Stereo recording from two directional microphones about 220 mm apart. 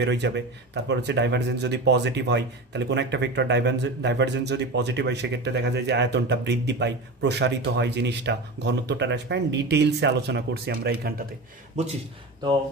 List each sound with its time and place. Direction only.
0.0 s speech: 50° right (ahead or behind)